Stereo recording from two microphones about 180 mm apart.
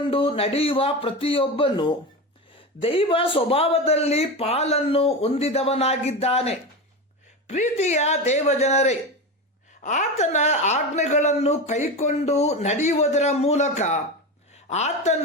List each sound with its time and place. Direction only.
0.1 s a man's voice: 30° left (ahead or behind)